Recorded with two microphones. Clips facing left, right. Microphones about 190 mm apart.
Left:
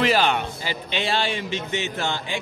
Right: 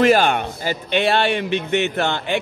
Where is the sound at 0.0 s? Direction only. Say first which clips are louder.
Right 5 dB; 50° right (ahead or behind).